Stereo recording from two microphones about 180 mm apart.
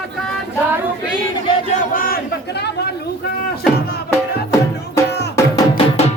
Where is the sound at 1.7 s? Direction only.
50° left (ahead or behind).